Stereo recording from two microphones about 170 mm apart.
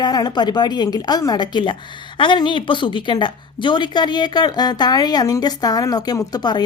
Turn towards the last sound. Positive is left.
turn(degrees=25)  # may be behind; listen again after turning